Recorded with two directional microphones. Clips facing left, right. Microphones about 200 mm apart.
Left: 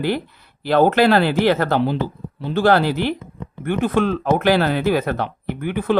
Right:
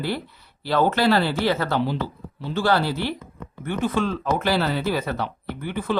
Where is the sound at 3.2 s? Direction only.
20° left (ahead or behind).